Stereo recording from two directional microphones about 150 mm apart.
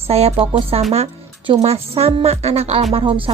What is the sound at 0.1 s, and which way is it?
Speech, 45° right (ahead or behind).